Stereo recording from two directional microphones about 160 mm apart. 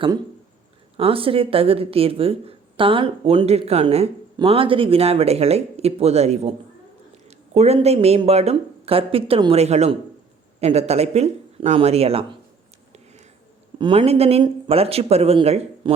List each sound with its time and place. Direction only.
0.9 s speech: 35° right (ahead or behind)
13.7 s speech: 35° right (ahead or behind)